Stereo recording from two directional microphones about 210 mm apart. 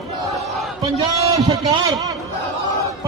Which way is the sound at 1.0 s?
15° right (ahead or behind).